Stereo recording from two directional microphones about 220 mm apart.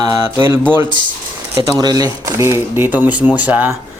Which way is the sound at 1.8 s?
20° right (ahead or behind).